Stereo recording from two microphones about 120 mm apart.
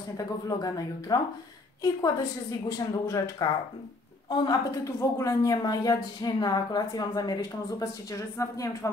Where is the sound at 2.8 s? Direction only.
30° left (ahead or behind).